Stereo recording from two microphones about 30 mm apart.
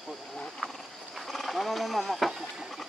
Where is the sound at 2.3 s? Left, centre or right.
Centre.